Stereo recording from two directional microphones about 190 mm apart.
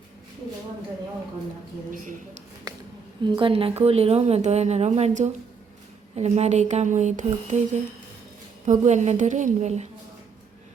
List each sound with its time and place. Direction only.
1.9 s a woman's voice: 45° right (ahead or behind)
2.7 s a sound: 20° right (ahead or behind)
3.2 s a woman's voice: 25° right (ahead or behind)